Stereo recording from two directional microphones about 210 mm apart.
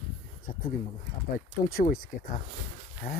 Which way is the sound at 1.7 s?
45° left (ahead or behind).